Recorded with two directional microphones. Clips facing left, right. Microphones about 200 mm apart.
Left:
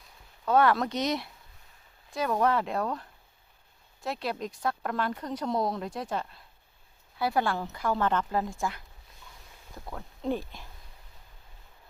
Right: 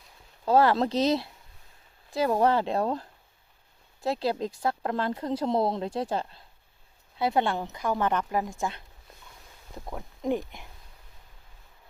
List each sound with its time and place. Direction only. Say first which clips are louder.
0.4 s speech: right 2 dB; 30° right (ahead or behind)
9.9 s speech: right 3 dB; 15° right (ahead or behind)